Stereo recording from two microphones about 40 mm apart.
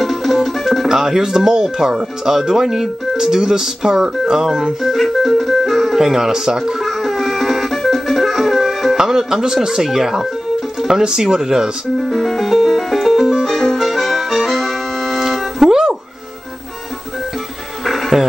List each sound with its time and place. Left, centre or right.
0.0 s music: centre
0.8 s speech: centre
5.5 s organ: centre
5.9 s speech: centre
6.8 s music: centre
8.9 s speech: centre
12.0 s music: centre
17.8 s music: centre